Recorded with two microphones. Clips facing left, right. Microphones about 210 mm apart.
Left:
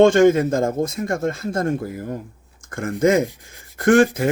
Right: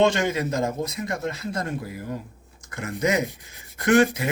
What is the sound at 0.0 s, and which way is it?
Speech, 50° left (ahead or behind).